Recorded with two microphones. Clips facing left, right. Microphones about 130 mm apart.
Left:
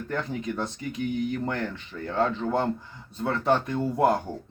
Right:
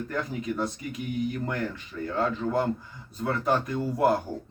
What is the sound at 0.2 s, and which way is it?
Speech, 5° right (ahead or behind).